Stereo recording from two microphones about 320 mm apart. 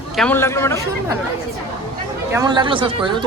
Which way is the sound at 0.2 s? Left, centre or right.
Centre.